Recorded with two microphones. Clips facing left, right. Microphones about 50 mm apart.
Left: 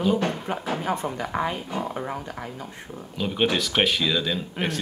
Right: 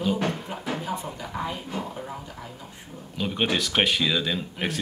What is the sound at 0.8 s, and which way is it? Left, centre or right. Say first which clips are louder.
Speech: left 5 dB; left.